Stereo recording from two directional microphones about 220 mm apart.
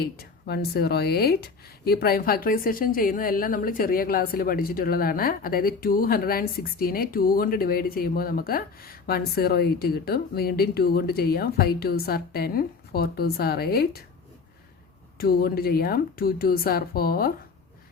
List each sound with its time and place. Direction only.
0.0 s speech: 45° left (ahead or behind)
15.2 s speech: 45° left (ahead or behind)